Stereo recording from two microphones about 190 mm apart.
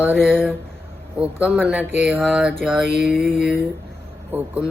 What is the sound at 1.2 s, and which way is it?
Speech, 10° right (ahead or behind).